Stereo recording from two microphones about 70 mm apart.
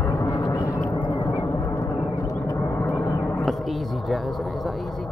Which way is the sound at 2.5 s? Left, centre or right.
Left.